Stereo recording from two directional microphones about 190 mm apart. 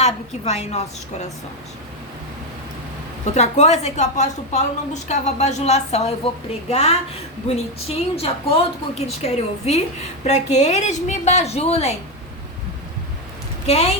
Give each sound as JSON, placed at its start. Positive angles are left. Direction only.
{"t": 0.0, "sound": "a woman's voice", "side_deg": 35}
{"t": 3.3, "sound": "a woman's voice", "side_deg": 35}
{"t": 13.7, "sound": "a woman's voice", "side_deg": 30}